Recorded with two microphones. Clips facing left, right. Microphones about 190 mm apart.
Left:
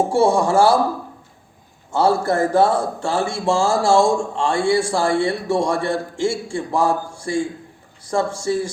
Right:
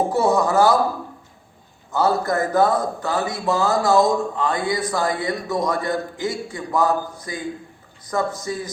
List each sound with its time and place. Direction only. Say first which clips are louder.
0.0 s speech: left 2 dB; 30° left (ahead or behind)
1.9 s speech: left 2 dB; 30° left (ahead or behind)